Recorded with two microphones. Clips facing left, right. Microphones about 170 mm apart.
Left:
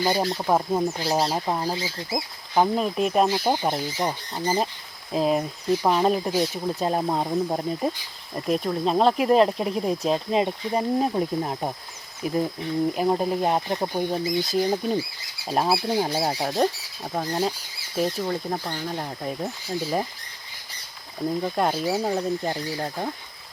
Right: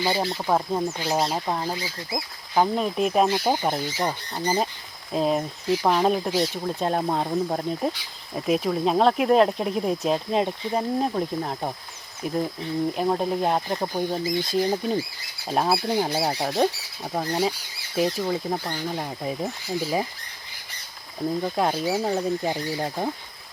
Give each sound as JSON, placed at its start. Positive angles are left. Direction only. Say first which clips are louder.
{"t": 0.1, "sound": "speech", "louder": "left 1 dB", "side_deg": 0}
{"t": 1.7, "sound": "speech", "louder": "left 2 dB", "side_deg": 25}
{"t": 2.1, "sound": "speech", "louder": "even", "side_deg": 0}
{"t": 21.2, "sound": "speech", "louder": "even", "side_deg": 0}